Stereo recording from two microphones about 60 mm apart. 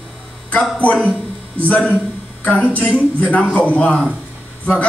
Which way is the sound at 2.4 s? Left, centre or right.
Left.